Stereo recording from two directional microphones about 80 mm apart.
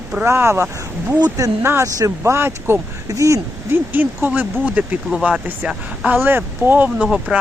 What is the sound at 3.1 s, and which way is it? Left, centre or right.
Speech, right.